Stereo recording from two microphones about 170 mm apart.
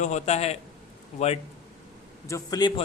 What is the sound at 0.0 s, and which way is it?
Speech, 40° left (ahead or behind).